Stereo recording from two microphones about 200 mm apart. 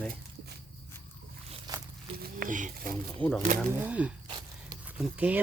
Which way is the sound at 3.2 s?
5° left (ahead or behind).